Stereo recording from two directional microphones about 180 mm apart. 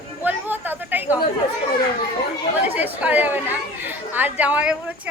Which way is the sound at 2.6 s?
10° right (ahead or behind).